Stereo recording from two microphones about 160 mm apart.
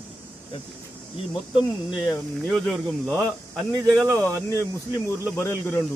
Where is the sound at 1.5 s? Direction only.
25° left (ahead or behind).